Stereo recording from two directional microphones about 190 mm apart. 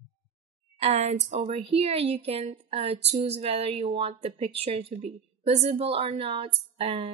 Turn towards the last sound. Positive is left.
turn(degrees=-30)  # may be behind; listen again after turning